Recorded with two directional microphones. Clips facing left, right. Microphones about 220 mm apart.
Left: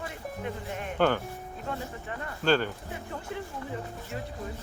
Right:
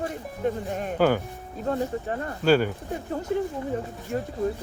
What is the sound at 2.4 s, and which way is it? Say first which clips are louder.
Speech: right 5 dB; 10° right (ahead or behind).